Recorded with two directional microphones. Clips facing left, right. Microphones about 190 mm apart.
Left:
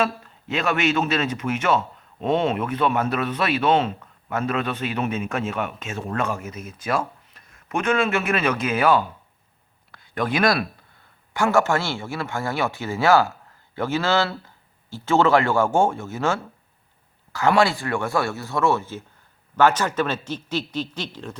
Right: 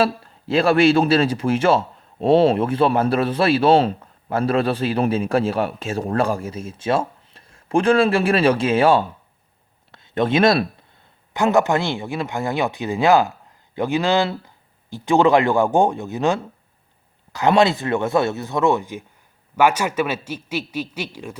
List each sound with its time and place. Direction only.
0.0 s a man's voice: 30° right (ahead or behind); by 21.3 s 10° right (ahead or behind)